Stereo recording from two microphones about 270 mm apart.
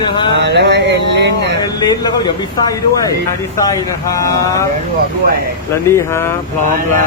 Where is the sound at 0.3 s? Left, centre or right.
Right.